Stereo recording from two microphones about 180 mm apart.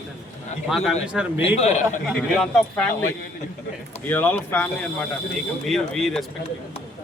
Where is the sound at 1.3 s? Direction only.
35° left (ahead or behind).